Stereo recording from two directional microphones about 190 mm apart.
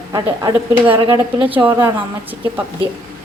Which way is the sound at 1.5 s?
10° right (ahead or behind).